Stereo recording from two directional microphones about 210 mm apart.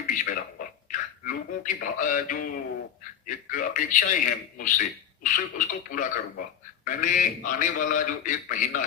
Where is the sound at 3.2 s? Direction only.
40° left (ahead or behind).